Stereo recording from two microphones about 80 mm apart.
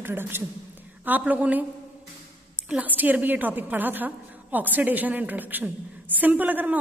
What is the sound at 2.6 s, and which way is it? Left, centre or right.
A woman's voice, centre.